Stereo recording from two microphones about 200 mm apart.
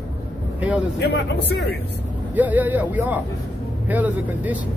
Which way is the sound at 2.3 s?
10° right (ahead or behind).